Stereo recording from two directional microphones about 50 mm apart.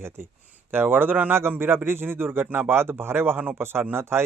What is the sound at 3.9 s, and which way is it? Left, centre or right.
Speech, right.